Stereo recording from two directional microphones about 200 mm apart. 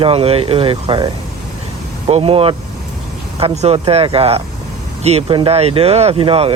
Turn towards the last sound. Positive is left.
turn(degrees=-30)  # may be behind; listen again after turning